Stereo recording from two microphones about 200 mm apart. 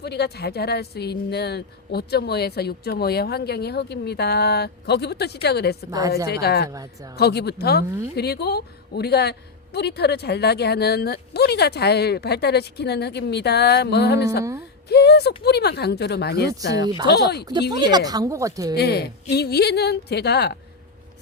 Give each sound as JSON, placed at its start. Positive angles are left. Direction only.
{"t": 0.0, "sound": "a woman's voice", "side_deg": 55}
{"t": 5.9, "sound": "speech", "side_deg": -15}
{"t": 6.2, "sound": "a woman's voice", "side_deg": 55}
{"t": 6.7, "sound": "speech", "side_deg": -15}
{"t": 7.2, "sound": "a woman's voice", "side_deg": 55}
{"t": 17.7, "sound": "speech", "side_deg": -20}
{"t": 18.8, "sound": "speech", "side_deg": 55}